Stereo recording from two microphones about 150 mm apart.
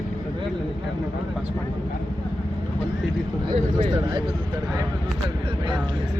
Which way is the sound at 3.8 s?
30° right (ahead or behind).